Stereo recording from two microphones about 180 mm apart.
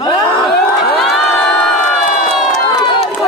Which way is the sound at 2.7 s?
25° left (ahead or behind).